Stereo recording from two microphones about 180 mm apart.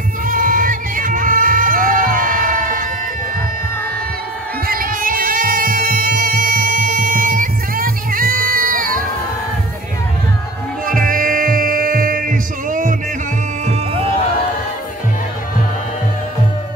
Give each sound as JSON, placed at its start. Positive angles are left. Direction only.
{"t": 0.3, "sound": "music", "side_deg": -50}
{"t": 4.6, "sound": "music", "side_deg": -50}
{"t": 10.9, "sound": "music", "side_deg": -50}
{"t": 13.7, "sound": "music", "side_deg": -30}